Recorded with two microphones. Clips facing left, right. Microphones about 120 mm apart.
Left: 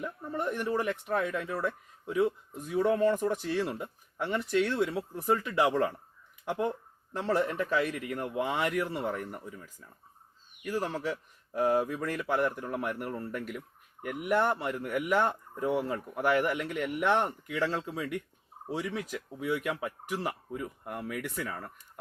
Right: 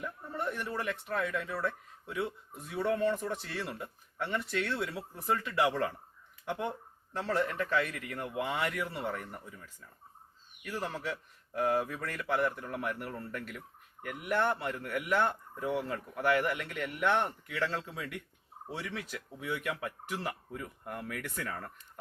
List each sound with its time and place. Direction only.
0.0 s a man's voice: 15° left (ahead or behind)